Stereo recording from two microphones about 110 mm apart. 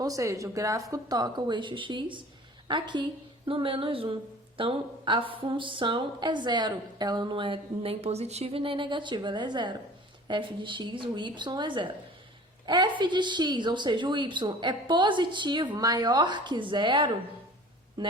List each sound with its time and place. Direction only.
0.0 s a woman's voice: 30° right (ahead or behind)